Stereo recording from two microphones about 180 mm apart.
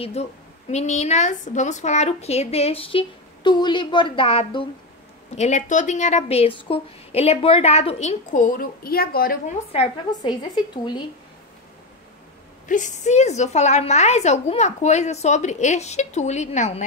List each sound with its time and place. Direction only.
0.0 s a woman's voice: 35° left (ahead or behind)
5.3 s a woman's voice: 40° left (ahead or behind); by 9.4 s 55° left (ahead or behind)
9.7 s a woman's voice: 30° left (ahead or behind)
12.6 s a woman's voice: 45° left (ahead or behind)